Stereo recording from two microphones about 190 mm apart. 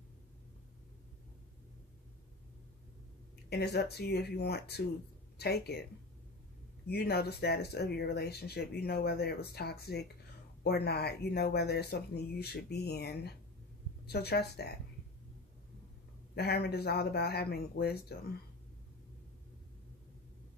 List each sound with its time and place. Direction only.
3.4 s speech: 60° left (ahead or behind)
6.9 s speech: 55° left (ahead or behind)
16.3 s speech: 60° left (ahead or behind)